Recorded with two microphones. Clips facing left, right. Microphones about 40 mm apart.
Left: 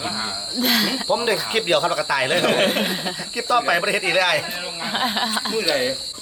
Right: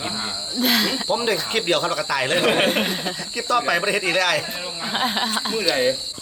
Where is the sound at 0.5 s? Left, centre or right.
Centre.